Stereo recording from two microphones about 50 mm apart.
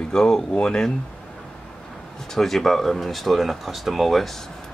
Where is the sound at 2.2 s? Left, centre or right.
Centre.